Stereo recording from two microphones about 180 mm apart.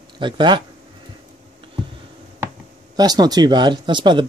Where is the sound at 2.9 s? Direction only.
20° right (ahead or behind).